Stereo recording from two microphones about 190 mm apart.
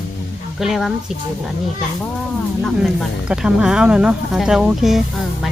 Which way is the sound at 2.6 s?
Centre (ahead or behind).